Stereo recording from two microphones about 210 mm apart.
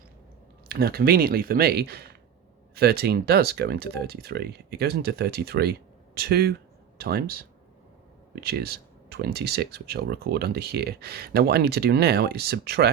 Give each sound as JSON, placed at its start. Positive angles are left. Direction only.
{"t": 0.7, "sound": "speech", "side_deg": -45}
{"t": 8.4, "sound": "speech", "side_deg": -50}